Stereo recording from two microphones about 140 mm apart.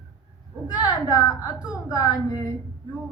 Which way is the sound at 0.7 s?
25° left (ahead or behind).